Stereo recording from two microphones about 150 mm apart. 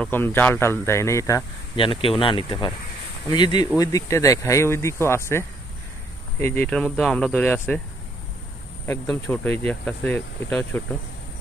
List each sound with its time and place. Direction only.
0.0 s speech: 15° left (ahead or behind)
1.8 s speech: 35° left (ahead or behind); by 5.4 s 15° left (ahead or behind)
6.4 s speech: 10° left (ahead or behind)
8.8 s speech: 15° left (ahead or behind)